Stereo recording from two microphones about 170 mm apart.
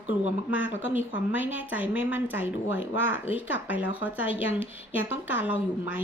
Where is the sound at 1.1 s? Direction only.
10° right (ahead or behind).